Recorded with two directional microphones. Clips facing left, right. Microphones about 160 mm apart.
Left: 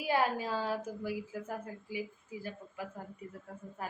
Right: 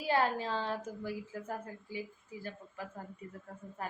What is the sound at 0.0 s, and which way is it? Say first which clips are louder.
A woman's voice: even; 10° left (ahead or behind).